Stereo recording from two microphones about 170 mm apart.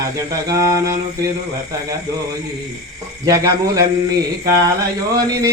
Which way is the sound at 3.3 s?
20° right (ahead or behind).